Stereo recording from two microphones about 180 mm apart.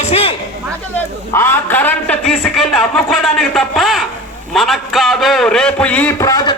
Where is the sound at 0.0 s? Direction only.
35° left (ahead or behind).